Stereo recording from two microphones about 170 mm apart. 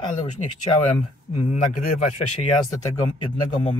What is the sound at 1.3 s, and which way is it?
Speech, 35° left (ahead or behind).